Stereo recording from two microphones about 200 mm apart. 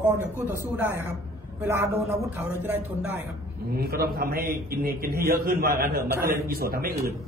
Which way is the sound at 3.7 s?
50° right (ahead or behind).